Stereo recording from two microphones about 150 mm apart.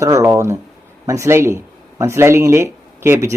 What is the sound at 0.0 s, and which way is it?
Speech, 20° right (ahead or behind).